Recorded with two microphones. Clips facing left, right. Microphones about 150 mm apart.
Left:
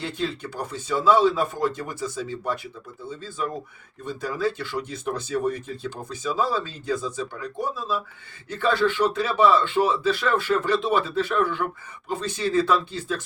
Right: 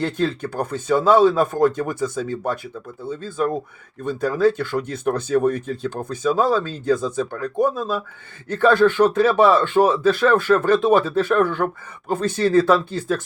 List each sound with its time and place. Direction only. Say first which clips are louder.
0.0 s speech: right 7 dB; 50° right (ahead or behind)